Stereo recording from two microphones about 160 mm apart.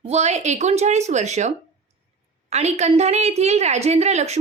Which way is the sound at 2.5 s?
45° right (ahead or behind).